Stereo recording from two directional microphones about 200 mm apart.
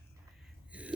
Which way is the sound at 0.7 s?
5° right (ahead or behind).